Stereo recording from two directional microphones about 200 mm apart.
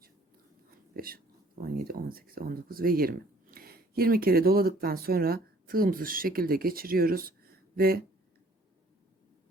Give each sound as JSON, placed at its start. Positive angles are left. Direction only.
{"t": 0.7, "sound": "speech", "side_deg": -45}